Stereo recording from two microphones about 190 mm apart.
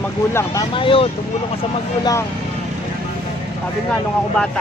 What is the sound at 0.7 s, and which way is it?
Speech, 30° left (ahead or behind).